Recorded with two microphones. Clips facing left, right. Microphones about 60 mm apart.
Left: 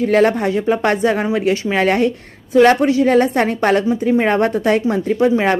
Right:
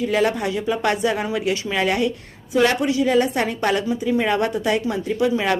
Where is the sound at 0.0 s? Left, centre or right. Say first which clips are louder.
Left 6 dB; left.